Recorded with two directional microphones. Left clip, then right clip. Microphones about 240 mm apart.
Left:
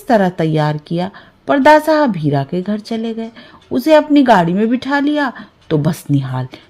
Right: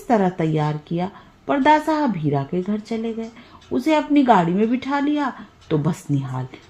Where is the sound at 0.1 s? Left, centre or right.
Left.